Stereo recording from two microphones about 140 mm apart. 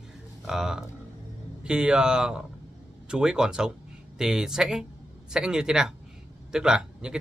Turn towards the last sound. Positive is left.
turn(degrees=-5)  # may be behind; listen again after turning